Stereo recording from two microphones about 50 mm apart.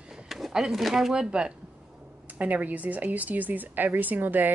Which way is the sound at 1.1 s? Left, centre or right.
Centre.